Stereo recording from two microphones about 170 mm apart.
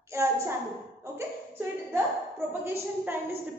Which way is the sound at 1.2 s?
10° right (ahead or behind).